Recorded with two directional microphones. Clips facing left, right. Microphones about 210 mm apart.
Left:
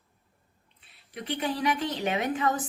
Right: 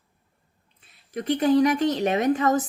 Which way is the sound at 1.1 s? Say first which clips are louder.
Right 11 dB; 45° right (ahead or behind).